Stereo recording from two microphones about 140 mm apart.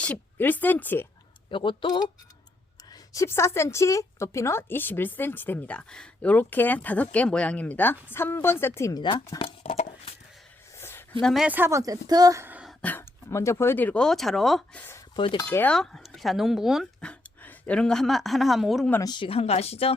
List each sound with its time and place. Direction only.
0.0 s a woman's voice: 10° left (ahead or behind)
1.5 s speech: 35° left (ahead or behind)
2.9 s a woman's voice: 25° left (ahead or behind)
9.4 s a sound: 50° left (ahead or behind)
10.8 s a sound: 15° left (ahead or behind)
11.2 s speech: centre (ahead or behind)
11.4 s speech: 15° right (ahead or behind)
12.8 s a woman's voice: 10° left (ahead or behind)
14.8 s speech: 15° left (ahead or behind)
15.1 s cutlery: 35° left (ahead or behind)
15.4 s speech: 10° left (ahead or behind)
19.0 s speech: 35° left (ahead or behind)